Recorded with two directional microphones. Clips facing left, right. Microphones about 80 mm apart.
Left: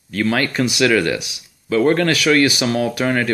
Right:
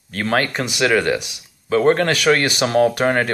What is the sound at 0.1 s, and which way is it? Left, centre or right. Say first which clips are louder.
Speech: left 1 dB; right.